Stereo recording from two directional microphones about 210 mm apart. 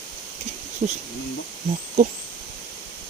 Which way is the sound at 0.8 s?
35° right (ahead or behind).